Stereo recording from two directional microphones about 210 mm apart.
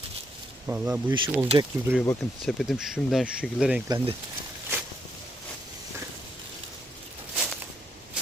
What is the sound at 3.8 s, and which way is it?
Speech, 20° right (ahead or behind).